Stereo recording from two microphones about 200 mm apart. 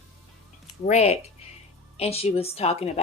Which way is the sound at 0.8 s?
35° left (ahead or behind).